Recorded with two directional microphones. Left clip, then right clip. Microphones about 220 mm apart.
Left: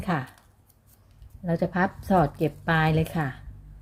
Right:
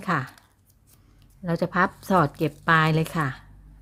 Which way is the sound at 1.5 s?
25° right (ahead or behind).